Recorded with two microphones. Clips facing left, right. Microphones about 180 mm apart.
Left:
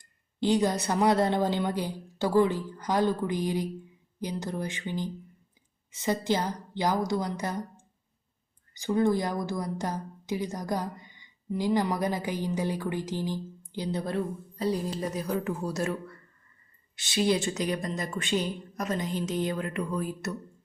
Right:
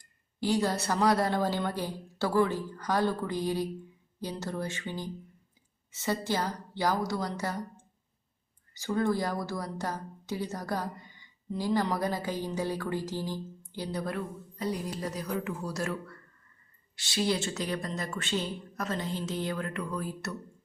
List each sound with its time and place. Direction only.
0.3 s a woman's voice: 20° left (ahead or behind)